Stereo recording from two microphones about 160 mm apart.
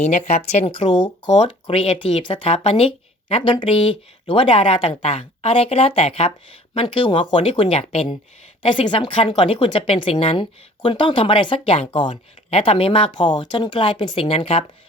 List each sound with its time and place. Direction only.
0.0 s speech: 45° left (ahead or behind)